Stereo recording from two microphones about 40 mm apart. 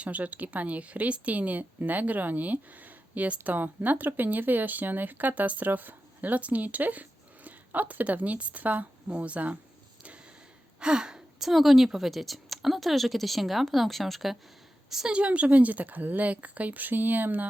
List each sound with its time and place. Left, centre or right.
0.0 s a woman's voice: right
10.8 s gasp: right
11.3 s a woman's voice: centre
15.1 s a woman's voice: right